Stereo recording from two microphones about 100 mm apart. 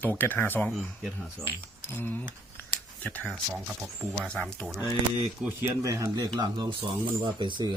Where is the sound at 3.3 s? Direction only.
5° right (ahead or behind).